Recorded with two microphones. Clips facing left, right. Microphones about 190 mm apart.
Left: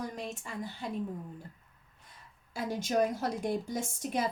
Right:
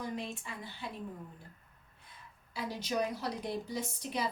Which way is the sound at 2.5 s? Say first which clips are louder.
Left 4 dB; 45° left (ahead or behind).